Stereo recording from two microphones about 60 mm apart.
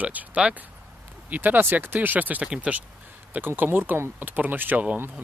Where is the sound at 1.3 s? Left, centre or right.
Right.